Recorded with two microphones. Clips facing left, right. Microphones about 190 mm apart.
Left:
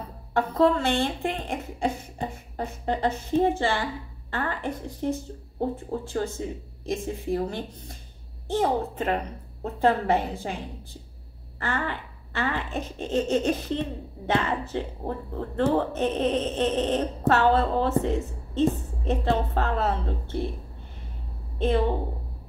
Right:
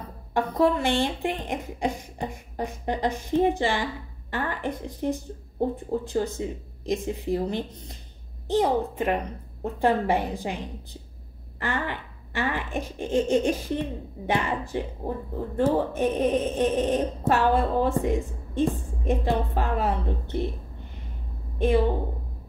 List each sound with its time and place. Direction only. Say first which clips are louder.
0.3 s speech: left 1 dB; 15° right (ahead or behind)
21.5 s a woman's voice: right 2 dB; 15° right (ahead or behind)